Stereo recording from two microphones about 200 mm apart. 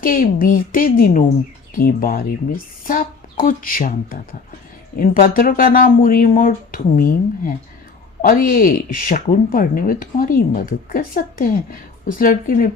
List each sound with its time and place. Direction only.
0.0 s speech: 45° left (ahead or behind)